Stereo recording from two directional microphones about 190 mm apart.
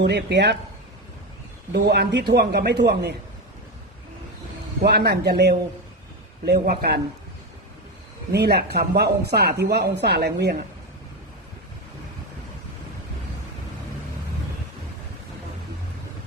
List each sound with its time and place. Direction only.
0.0 s speech: 60° right (ahead or behind)
1.7 s speech: 60° right (ahead or behind)
4.8 s speech: 55° right (ahead or behind)
8.3 s speech: 60° right (ahead or behind)